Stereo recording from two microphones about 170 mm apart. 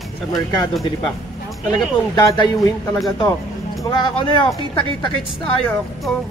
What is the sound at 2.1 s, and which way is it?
Speech, 25° left (ahead or behind).